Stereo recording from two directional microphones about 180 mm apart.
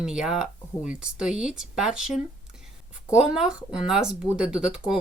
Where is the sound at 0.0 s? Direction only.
5° right (ahead or behind).